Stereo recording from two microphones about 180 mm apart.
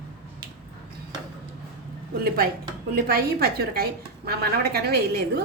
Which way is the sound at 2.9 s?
60° right (ahead or behind).